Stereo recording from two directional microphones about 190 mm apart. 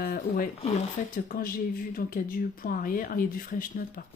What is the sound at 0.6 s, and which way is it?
Speech, 40° left (ahead or behind).